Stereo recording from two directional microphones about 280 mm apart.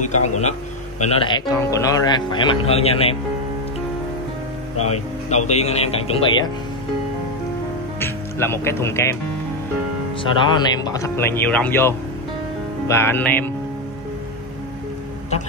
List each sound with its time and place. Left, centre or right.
0.0 s speech: left
4.8 s speech: left
8.0 s speech: centre
10.2 s speech: centre